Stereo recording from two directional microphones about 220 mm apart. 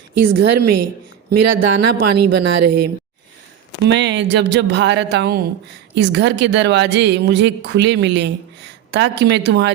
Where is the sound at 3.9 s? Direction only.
55° right (ahead or behind).